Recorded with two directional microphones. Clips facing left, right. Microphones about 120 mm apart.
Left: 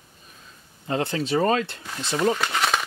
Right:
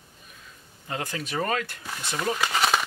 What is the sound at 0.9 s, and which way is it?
Speech, 25° left (ahead or behind).